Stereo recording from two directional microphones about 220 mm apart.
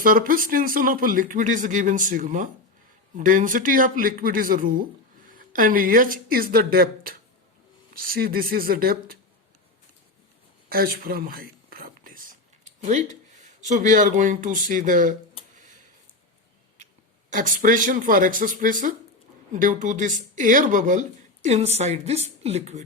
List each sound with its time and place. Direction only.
0.0 s speech: 40° right (ahead or behind)
10.7 s a sound: 40° right (ahead or behind)
17.2 s speech: 35° right (ahead or behind)